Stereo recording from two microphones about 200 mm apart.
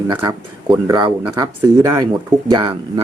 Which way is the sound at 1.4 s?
15° right (ahead or behind).